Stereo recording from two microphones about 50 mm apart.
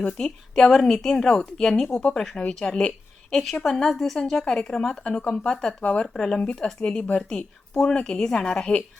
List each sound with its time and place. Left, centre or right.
0.2 s speech: centre
0.5 s a woman's voice: centre
1.9 s speech: left
2.1 s a woman's voice: centre
6.1 s a woman's voice: centre
6.4 s a woman's voice: left